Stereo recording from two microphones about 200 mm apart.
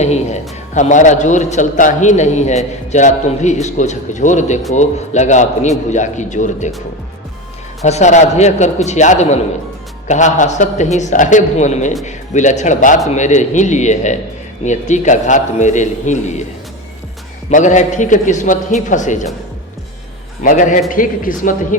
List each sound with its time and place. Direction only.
0.0 s a man's voice: 35° left (ahead or behind)
7.9 s a man's voice: 35° left (ahead or behind)
17.5 s a man's voice: 40° left (ahead or behind)
20.4 s a man's voice: 40° left (ahead or behind)